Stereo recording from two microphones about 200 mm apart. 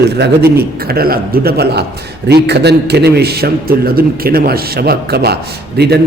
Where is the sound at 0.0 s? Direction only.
55° right (ahead or behind).